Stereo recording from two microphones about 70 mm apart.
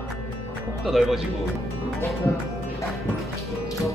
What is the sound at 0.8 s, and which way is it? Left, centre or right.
Speech, centre.